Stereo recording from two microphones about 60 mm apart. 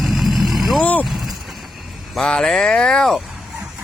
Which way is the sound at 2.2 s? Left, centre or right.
Centre.